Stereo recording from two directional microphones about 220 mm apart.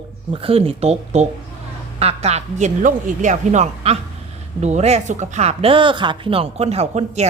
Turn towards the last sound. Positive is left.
turn(degrees=-30)  # may be behind; listen again after turning